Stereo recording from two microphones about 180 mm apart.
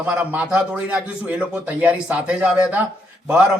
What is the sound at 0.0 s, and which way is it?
Speech, 10° right (ahead or behind).